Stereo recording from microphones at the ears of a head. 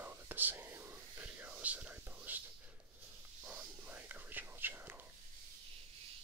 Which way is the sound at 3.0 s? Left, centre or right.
Right.